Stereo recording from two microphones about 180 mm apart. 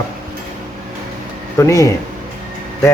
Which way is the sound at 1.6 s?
20° left (ahead or behind).